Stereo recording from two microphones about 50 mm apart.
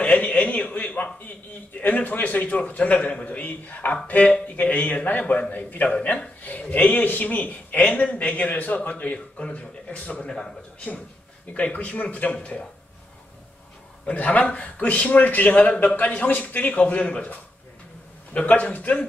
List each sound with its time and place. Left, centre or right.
0.0 s a sound: left
1.8 s a man's voice: left
5.2 s a man's voice: left
5.5 s a man's voice: left
5.9 s a man's voice: left
6.4 s a man's voice: left
10.2 s a man's voice: centre
11.5 s a man's voice: left
14.1 s a man's voice: left